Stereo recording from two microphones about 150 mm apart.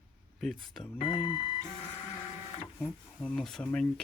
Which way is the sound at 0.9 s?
35° left (ahead or behind).